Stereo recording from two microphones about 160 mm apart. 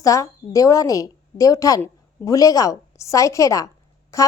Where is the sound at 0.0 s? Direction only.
20° left (ahead or behind).